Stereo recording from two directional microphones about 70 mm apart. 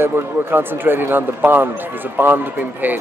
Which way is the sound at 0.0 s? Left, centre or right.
Right.